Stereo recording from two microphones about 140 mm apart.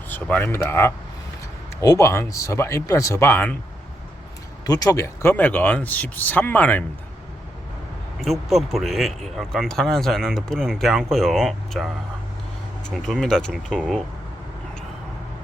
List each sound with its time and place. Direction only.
0.1 s speech: 15° left (ahead or behind)
4.6 s speech: 25° left (ahead or behind); by 6.8 s 10° left (ahead or behind)
8.2 s speech: centre (ahead or behind)
13.1 s speech: 5° left (ahead or behind)